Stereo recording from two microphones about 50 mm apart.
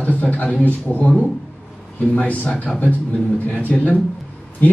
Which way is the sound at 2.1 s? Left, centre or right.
Left.